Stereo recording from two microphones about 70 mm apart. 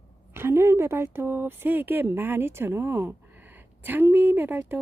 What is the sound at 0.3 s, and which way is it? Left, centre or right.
Speech, right.